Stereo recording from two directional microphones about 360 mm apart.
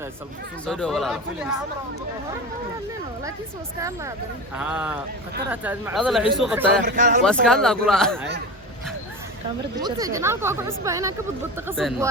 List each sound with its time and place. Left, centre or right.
0.6 s speech: centre
3.8 s speech: centre
6.8 s speech: right
7.3 s speech: centre
9.8 s speech: centre